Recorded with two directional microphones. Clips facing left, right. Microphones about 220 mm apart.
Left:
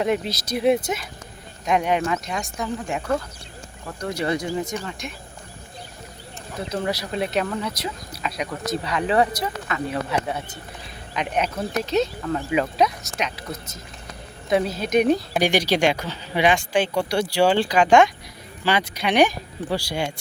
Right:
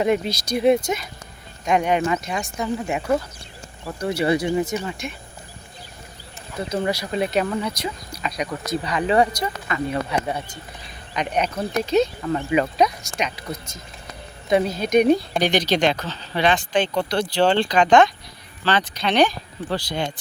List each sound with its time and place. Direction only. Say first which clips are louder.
0.0 s speech: right 2 dB; centre (ahead or behind)
6.6 s speech: right 2 dB; centre (ahead or behind)